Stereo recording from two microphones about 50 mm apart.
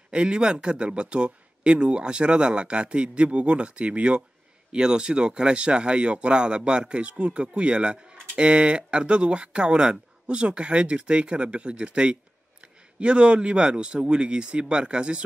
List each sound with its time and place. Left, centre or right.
0.1 s speech: centre